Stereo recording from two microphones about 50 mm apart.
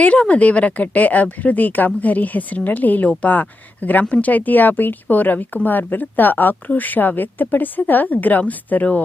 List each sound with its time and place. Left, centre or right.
0.0 s speech: left